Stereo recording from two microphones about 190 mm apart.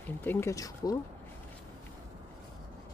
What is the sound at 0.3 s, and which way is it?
Speech, 15° left (ahead or behind).